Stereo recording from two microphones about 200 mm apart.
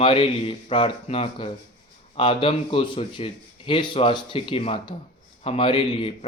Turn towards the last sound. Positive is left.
turn(degrees=25)  # may be behind; listen again after turning